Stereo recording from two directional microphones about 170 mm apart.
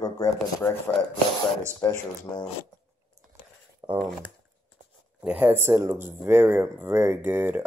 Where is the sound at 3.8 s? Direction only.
25° right (ahead or behind).